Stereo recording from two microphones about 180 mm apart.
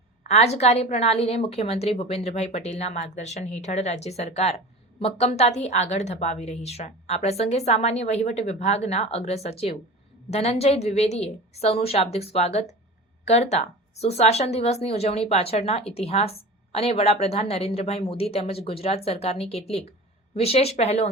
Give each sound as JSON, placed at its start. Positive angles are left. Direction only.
{"t": 0.3, "sound": "a woman's voice", "side_deg": 35}